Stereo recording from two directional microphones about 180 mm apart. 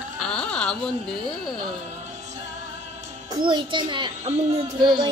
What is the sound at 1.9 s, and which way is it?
Music, 40° right (ahead or behind).